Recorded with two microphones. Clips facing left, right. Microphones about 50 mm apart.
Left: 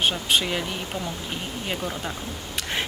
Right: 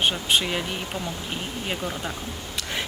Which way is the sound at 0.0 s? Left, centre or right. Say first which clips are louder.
Even; centre.